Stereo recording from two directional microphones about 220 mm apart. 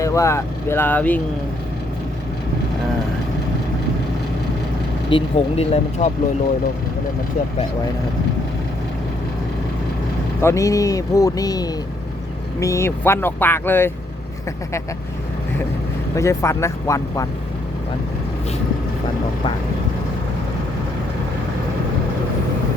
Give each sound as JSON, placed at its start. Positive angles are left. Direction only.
{"t": 0.0, "sound": "speech", "side_deg": 15}
{"t": 5.1, "sound": "speech", "side_deg": 25}
{"t": 10.4, "sound": "speech", "side_deg": 15}
{"t": 16.1, "sound": "speech", "side_deg": 15}